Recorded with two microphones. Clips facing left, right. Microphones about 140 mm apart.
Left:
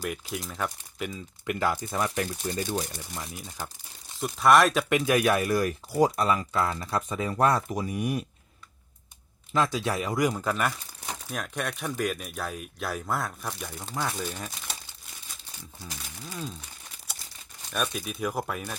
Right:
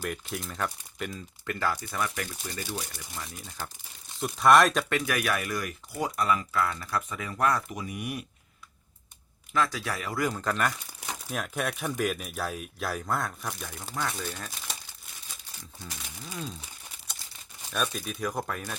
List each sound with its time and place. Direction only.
0.0 s speech: 5° left (ahead or behind)
1.5 s speech: 15° left (ahead or behind)
1.9 s speech: 30° left (ahead or behind)
2.9 s speech: 15° left (ahead or behind)
4.2 s speech: centre (ahead or behind)
4.9 s speech: 20° left (ahead or behind)
9.5 s speech: 20° left (ahead or behind)
15.8 s speech: 5° left (ahead or behind)
17.7 s speech: 5° left (ahead or behind)